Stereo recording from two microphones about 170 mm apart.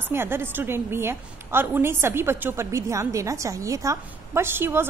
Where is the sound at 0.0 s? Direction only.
15° right (ahead or behind).